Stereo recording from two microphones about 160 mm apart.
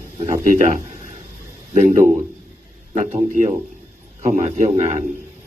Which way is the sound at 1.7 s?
50° right (ahead or behind).